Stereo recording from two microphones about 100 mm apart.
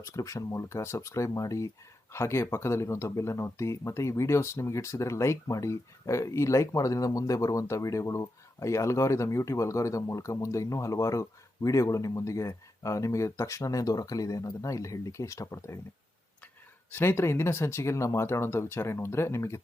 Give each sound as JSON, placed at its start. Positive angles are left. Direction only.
{"t": 0.0, "sound": "speech", "side_deg": 35}
{"t": 16.9, "sound": "speech", "side_deg": 25}